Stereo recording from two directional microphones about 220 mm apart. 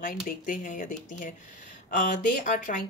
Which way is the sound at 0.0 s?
40° left (ahead or behind).